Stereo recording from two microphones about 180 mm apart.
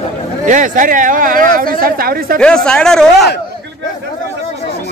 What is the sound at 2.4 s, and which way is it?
Speech, 5° left (ahead or behind).